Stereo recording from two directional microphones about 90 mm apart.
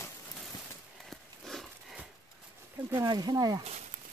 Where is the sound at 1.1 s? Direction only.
5° left (ahead or behind).